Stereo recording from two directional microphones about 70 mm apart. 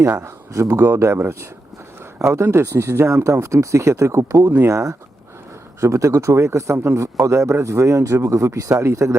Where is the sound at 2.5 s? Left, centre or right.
Right.